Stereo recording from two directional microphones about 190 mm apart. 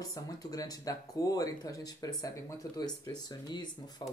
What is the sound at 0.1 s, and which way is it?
Speech, 20° left (ahead or behind).